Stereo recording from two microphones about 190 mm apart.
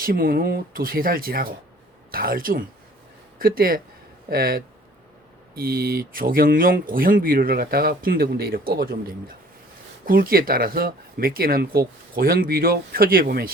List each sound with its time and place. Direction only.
0.0 s speech: 50° right (ahead or behind)